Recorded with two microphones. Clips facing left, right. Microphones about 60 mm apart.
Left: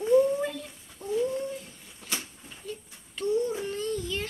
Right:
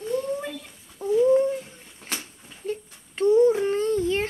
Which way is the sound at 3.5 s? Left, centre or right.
Right.